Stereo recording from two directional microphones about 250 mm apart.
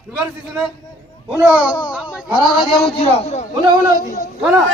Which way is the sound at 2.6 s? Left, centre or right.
Left.